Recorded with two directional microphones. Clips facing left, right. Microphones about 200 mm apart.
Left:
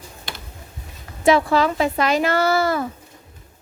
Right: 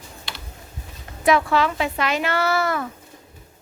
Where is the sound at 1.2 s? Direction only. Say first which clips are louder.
Left 2 dB; 30° left (ahead or behind).